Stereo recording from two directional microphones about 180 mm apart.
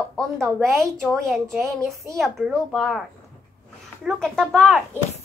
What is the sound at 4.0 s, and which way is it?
Speech, centre (ahead or behind).